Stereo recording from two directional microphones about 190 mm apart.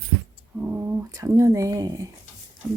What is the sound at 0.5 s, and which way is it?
Speech, 10° right (ahead or behind).